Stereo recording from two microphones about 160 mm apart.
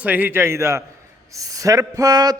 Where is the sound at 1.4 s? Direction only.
20° right (ahead or behind).